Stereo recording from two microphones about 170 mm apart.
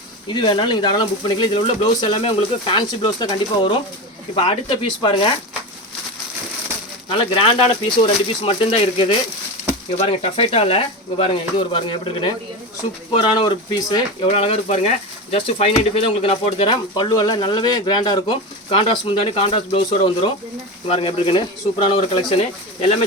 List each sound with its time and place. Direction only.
0.3 s speech: 25° left (ahead or behind)
7.1 s speech: 30° left (ahead or behind)
14.3 s speech: 35° left (ahead or behind)